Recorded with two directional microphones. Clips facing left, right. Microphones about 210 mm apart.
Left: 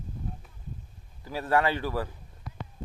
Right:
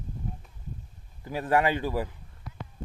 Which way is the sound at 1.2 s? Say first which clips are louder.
Right 1 dB; 15° right (ahead or behind).